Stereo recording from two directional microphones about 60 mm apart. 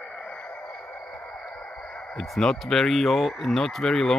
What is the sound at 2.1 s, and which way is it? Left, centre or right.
Speech, centre.